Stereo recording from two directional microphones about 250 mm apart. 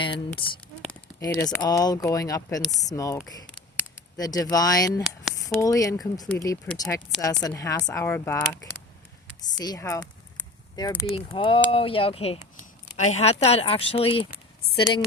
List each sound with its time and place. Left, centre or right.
0.0 s speech: centre
2.6 s speech: centre
2.8 s speech: centre
3.4 s a sound: centre
5.5 s speech: centre
9.2 s a sound: centre
11.1 s speech: left